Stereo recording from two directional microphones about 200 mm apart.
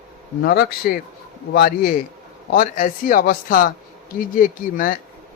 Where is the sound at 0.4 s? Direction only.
50° left (ahead or behind).